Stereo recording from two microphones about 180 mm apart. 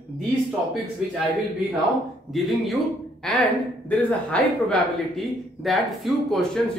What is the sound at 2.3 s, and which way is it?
Speech, centre (ahead or behind).